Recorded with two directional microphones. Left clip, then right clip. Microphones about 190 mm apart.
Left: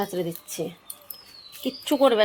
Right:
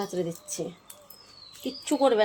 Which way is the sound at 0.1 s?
40° left (ahead or behind).